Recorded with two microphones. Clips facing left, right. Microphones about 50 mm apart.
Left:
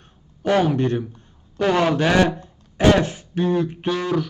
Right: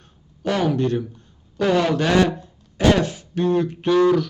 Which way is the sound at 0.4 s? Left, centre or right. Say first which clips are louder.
Left 2 dB; left.